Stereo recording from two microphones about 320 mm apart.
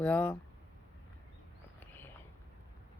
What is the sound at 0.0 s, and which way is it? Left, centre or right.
Speech, centre.